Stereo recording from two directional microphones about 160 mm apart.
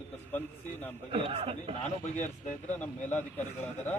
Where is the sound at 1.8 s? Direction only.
50° left (ahead or behind).